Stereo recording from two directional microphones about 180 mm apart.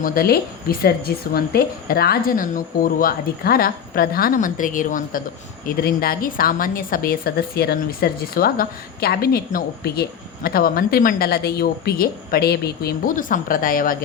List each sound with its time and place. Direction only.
0.0 s a woman's voice: 55° left (ahead or behind)